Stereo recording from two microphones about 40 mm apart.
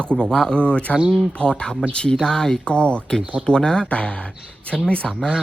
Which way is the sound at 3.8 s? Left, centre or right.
Left.